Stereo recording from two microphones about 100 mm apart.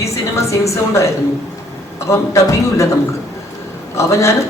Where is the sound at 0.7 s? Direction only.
30° left (ahead or behind).